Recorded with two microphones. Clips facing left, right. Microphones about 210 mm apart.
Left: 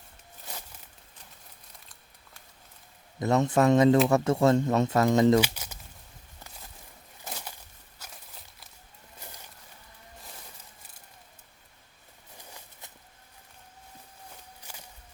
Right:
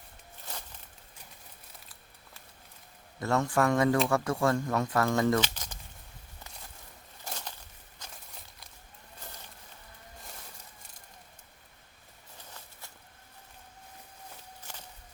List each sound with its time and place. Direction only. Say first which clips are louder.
3.2 s speech: left 4 dB; 20° left (ahead or behind)
5.4 s speech: left 5 dB; 10° left (ahead or behind)
7.3 s a sound: left 1 dB; 5° left (ahead or behind)